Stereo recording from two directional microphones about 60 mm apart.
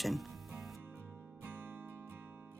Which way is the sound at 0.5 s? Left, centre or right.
Centre.